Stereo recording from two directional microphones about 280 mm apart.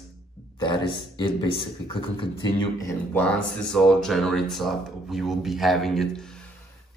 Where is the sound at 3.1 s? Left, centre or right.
Centre.